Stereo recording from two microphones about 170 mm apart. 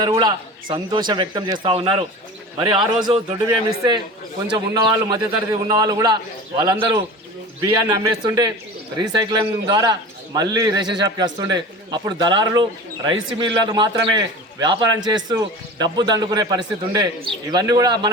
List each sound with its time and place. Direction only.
0.0 s a man's voice: 25° right (ahead or behind)
4.5 s a man's voice: 25° right (ahead or behind)